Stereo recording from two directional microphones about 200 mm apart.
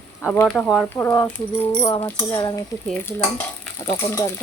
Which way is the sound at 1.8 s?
20° left (ahead or behind).